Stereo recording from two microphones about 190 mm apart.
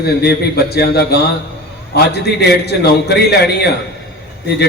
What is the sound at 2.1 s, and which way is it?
A man's voice, 60° left (ahead or behind).